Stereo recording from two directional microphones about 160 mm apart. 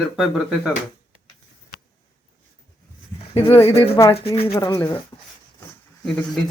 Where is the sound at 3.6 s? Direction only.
35° left (ahead or behind).